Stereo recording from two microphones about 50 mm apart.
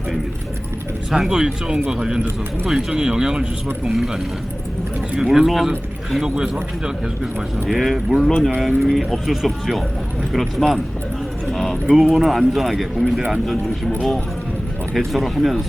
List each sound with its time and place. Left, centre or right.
1.1 s speech: centre
5.2 s speech: centre
8.2 s speech: centre
8.5 s speech: centre
11.9 s speech: centre
14.9 s speech: centre